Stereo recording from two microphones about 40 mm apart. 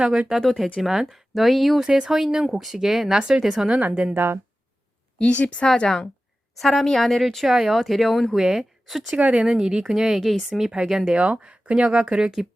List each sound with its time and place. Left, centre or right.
0.0 s speech: centre
0.4 s speech: centre
4.1 s speech: right
5.1 s speech: left
5.6 s speech: centre
6.6 s speech: centre
7.5 s speech: centre
7.8 s speech: centre
8.4 s speech: centre
9.1 s speech: right
9.5 s speech: centre
10.2 s speech: centre
11.1 s speech: right
12.2 s speech: centre